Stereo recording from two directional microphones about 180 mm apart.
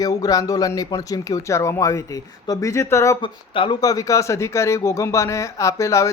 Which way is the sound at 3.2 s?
30° left (ahead or behind).